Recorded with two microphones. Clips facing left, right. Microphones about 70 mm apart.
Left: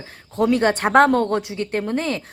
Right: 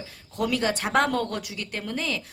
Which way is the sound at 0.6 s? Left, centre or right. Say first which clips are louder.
Left 9 dB; left.